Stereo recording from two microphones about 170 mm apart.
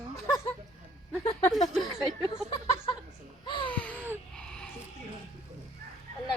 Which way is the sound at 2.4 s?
25° left (ahead or behind).